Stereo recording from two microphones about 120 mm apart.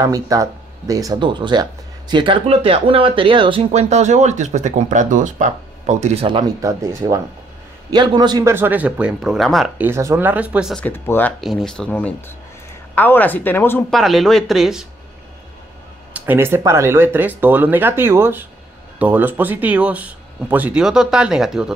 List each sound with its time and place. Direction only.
0.0 s speech: 30° right (ahead or behind)
2.4 s speech: 55° right (ahead or behind)
3.7 s speech: 70° right (ahead or behind)
6.2 s speech: 40° right (ahead or behind)
6.6 s speech: 25° right (ahead or behind)
7.9 s speech: 40° right (ahead or behind)
8.5 s speech: 15° right (ahead or behind); by 9.7 s centre (ahead or behind)
9.8 s speech: 20° right (ahead or behind)
10.9 s speech: 15° left (ahead or behind)
11.4 s speech: 5° left (ahead or behind)
13.8 s speech: centre (ahead or behind)
16.1 s speech: 15° right (ahead or behind)